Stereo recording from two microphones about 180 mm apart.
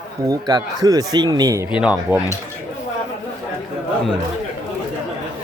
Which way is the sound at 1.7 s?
5° right (ahead or behind).